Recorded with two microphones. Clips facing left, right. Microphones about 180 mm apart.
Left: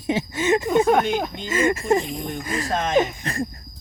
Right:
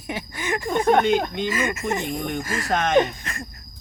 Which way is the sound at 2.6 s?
70° right (ahead or behind).